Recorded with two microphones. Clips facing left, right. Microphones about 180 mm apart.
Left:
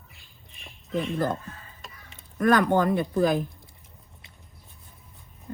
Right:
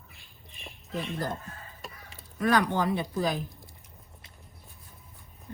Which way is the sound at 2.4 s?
55° left (ahead or behind).